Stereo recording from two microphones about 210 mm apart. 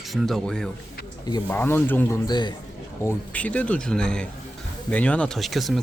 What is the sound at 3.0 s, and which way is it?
Speech, 5° left (ahead or behind).